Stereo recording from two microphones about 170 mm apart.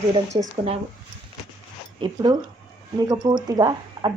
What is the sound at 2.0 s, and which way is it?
Speech, 25° right (ahead or behind).